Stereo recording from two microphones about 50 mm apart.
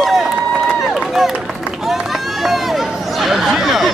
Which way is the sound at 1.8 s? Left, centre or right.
Centre.